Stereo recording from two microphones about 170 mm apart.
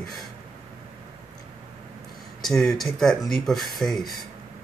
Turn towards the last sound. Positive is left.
turn(degrees=0)  # may be behind; listen again after turning